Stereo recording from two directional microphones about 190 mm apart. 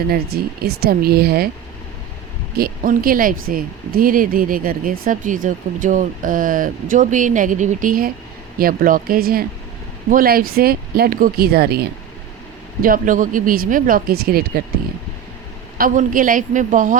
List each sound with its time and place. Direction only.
0.1 s speech: 55° right (ahead or behind)
2.6 s speech: 50° right (ahead or behind)
15.8 s speech: 45° right (ahead or behind)